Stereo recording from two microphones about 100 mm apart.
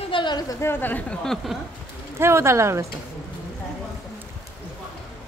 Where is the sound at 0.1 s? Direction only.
50° left (ahead or behind).